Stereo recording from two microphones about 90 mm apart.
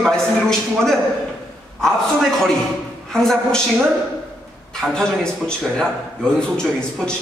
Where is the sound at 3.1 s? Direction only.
5° left (ahead or behind).